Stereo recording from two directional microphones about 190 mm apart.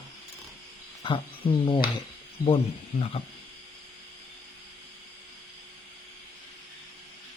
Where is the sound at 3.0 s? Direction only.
30° left (ahead or behind).